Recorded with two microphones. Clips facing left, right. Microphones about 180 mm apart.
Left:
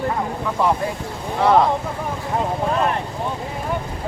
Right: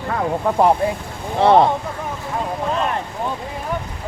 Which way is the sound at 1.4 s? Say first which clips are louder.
Right 3 dB; 30° right (ahead or behind).